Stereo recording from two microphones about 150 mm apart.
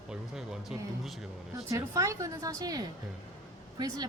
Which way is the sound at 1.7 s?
20° right (ahead or behind).